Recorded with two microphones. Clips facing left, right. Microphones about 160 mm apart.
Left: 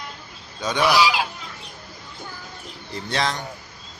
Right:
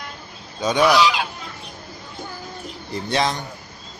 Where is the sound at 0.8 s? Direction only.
5° left (ahead or behind).